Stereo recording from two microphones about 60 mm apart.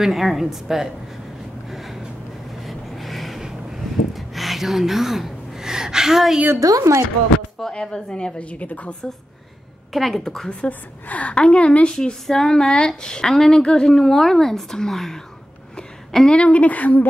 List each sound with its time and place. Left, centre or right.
0.0 s speech: centre
1.7 s vehicle: centre
2.6 s gasp: centre
6.6 s a woman's voice: right
7.3 s a woman's voice: centre
9.9 s speech: centre
10.5 s a woman's voice: left